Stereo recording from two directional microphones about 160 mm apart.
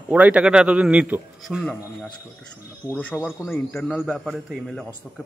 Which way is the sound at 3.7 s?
5° left (ahead or behind).